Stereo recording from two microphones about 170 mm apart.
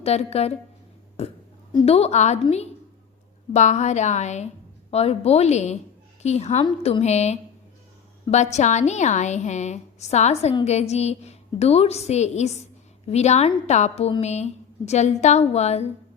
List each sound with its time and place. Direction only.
0.0 s a woman's voice: 40° left (ahead or behind)
1.2 s a sound: 35° left (ahead or behind)
1.7 s a woman's voice: 35° left (ahead or behind)